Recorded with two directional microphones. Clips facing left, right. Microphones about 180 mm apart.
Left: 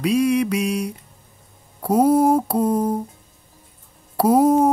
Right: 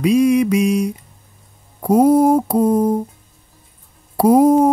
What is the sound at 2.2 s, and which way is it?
Speech, 10° right (ahead or behind).